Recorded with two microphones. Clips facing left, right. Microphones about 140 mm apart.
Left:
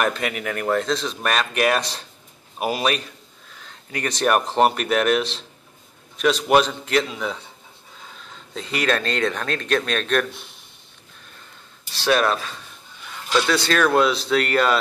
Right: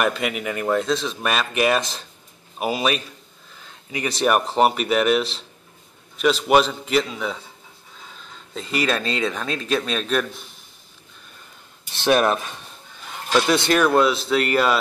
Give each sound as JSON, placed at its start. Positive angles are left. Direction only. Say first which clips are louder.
{"t": 0.0, "sound": "speech", "louder": "right 1 dB", "side_deg": 0}
{"t": 11.9, "sound": "speech", "louder": "right 2 dB", "side_deg": -20}
{"t": 13.8, "sound": "speech", "louder": "right 1 dB", "side_deg": 0}